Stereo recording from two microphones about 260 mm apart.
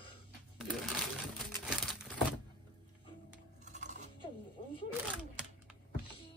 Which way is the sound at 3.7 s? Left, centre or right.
Right.